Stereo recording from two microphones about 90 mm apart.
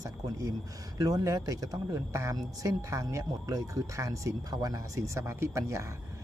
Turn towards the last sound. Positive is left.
turn(degrees=-35)  # may be behind; listen again after turning